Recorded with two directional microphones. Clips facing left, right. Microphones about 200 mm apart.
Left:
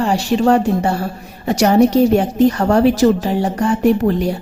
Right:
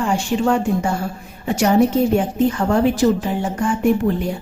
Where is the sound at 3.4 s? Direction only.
35° left (ahead or behind).